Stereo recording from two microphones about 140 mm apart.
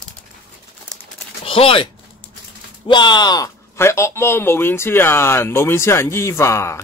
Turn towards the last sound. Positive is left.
turn(degrees=20)  # may be behind; listen again after turning